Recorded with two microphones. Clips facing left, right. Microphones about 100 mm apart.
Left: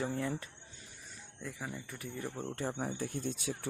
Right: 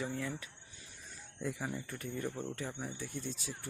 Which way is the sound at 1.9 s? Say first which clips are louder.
Right 2 dB; 10° left (ahead or behind).